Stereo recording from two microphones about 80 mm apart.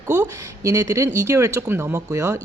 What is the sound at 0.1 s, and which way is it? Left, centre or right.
Speech, right.